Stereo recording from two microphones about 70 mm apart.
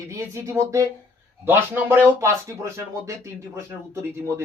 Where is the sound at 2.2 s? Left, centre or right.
Right.